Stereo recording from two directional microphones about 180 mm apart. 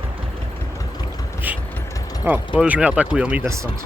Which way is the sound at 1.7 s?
15° left (ahead or behind).